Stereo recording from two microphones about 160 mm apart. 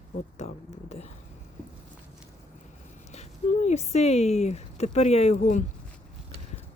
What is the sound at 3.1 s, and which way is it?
Speech, 45° left (ahead or behind).